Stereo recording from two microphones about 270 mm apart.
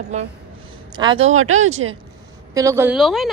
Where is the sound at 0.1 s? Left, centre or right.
Right.